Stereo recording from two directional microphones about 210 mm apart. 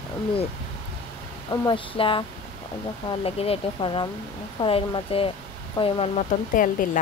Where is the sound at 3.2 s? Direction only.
30° left (ahead or behind).